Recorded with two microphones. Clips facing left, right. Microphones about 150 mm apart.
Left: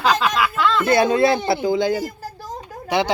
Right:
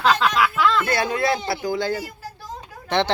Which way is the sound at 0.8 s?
20° left (ahead or behind).